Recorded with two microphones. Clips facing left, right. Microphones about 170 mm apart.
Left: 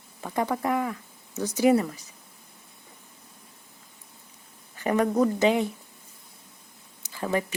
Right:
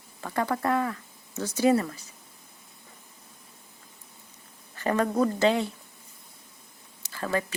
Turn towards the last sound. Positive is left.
turn(degrees=15)  # may be behind; listen again after turning